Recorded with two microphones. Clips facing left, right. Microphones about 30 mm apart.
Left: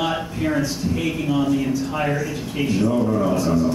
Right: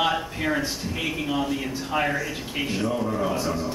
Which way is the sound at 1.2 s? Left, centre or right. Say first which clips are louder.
Left 5 dB; centre.